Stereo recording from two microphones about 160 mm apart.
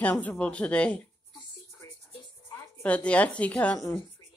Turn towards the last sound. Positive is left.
turn(degrees=10)  # may be behind; listen again after turning